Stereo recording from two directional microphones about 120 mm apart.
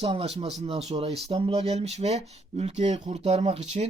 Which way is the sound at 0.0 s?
55° right (ahead or behind).